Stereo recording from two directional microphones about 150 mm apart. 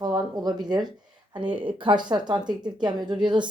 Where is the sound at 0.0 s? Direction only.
30° right (ahead or behind).